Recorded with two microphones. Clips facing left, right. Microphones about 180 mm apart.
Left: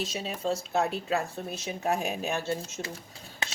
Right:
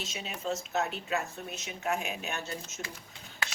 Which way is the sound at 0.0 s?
35° left (ahead or behind).